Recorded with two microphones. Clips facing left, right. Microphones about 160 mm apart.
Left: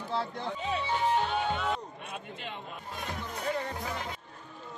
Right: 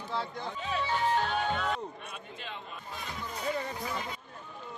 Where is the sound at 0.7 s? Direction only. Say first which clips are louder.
Even; 20° left (ahead or behind).